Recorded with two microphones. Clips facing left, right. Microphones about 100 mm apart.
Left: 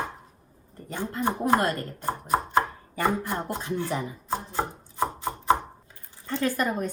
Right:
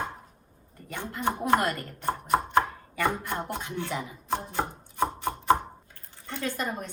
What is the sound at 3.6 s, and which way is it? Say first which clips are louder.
Speech: left 4 dB; 40° left (ahead or behind).